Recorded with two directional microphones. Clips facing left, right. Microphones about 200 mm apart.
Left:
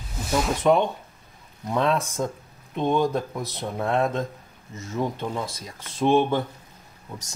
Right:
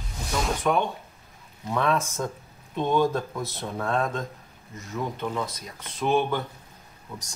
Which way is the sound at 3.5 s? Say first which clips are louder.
Left 3 dB; 20° left (ahead or behind).